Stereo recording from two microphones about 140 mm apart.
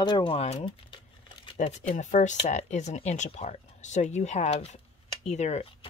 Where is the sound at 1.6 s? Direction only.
60° left (ahead or behind).